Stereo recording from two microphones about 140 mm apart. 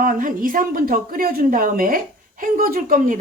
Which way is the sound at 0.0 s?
75° right (ahead or behind).